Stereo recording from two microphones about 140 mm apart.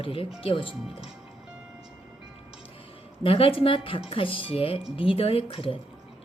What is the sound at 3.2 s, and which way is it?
Speech, 40° left (ahead or behind).